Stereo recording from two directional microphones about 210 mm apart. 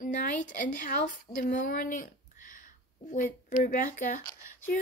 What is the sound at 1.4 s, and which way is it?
Speech, 40° left (ahead or behind).